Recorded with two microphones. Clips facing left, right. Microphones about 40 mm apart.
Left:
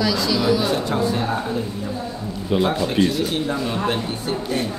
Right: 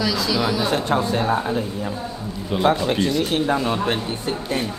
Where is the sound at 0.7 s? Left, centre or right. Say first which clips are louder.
Even; right.